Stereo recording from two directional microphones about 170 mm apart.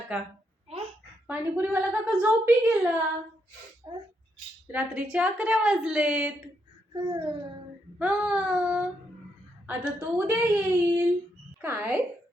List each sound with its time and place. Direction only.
0.1 s a woman's voice: 10° right (ahead or behind)
1.3 s a woman's voice: 10° right (ahead or behind)
3.8 s speech: 25° right (ahead or behind)
4.7 s a woman's voice: 10° right (ahead or behind)
6.9 s babbling: 25° right (ahead or behind)
7.9 s a woman's voice: 10° right (ahead or behind)